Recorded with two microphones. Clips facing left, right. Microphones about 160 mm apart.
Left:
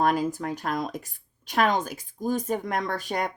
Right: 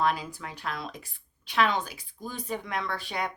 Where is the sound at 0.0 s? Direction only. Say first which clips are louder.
Left 5 dB; 45° left (ahead or behind).